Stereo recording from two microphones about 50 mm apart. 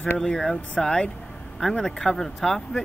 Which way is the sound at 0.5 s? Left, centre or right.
Centre.